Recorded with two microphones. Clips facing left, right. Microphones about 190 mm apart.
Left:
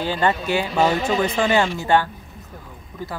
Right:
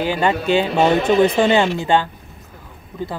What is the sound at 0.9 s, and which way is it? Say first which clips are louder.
Speech: right 7 dB; 65° right (ahead or behind).